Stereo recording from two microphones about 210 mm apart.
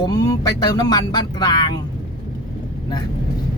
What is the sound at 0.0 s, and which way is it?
Speech, 20° left (ahead or behind).